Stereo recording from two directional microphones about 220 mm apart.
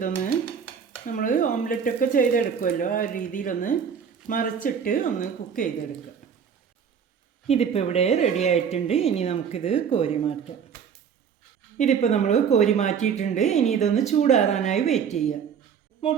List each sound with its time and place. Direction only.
1.0 s speech: 35° left (ahead or behind)
7.4 s a woman's voice: 25° left (ahead or behind)
11.8 s speech: 35° left (ahead or behind)